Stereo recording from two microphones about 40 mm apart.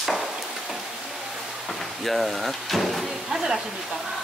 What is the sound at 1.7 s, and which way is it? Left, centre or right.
Speech, centre.